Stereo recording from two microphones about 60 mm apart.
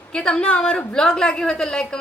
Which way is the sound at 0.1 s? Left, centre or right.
Centre.